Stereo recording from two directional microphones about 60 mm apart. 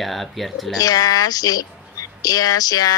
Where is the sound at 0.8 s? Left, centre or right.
Left.